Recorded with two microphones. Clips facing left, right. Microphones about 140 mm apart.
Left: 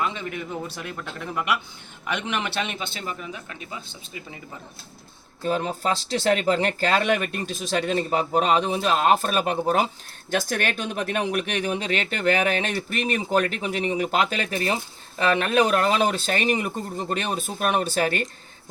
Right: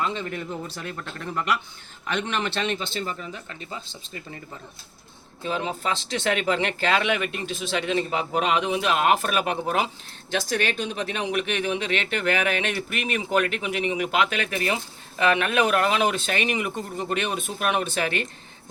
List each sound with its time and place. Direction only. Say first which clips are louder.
0.3 s a man's voice: left 1 dB; 10° left (ahead or behind)
2.0 s a man's voice: right 1 dB; 10° left (ahead or behind)
5.4 s speech: left 3 dB; 45° left (ahead or behind)
10.3 s speech: even; 50° left (ahead or behind)